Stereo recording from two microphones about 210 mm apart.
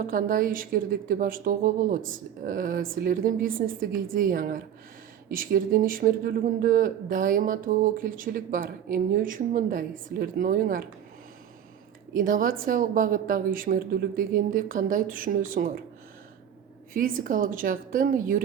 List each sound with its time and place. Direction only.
0.0 s speech: 40° right (ahead or behind)
12.1 s speech: 40° right (ahead or behind)
16.9 s speech: 40° right (ahead or behind)